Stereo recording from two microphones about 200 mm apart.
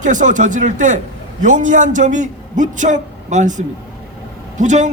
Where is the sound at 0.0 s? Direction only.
40° right (ahead or behind).